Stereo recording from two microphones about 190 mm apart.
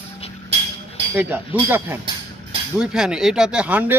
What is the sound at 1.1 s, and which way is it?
Speech, 10° right (ahead or behind).